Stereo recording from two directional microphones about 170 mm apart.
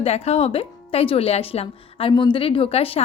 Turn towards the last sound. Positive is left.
turn(degrees=35)  # may be behind; listen again after turning